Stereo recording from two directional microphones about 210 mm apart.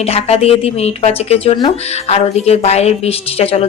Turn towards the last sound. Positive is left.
turn(degrees=30)  # may be behind; listen again after turning